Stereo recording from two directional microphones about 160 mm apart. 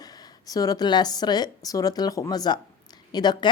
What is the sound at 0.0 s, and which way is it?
A woman's voice, 25° left (ahead or behind).